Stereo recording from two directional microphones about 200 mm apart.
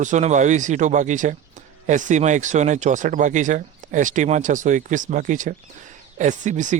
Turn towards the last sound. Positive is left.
turn(degrees=-40)  # may be behind; listen again after turning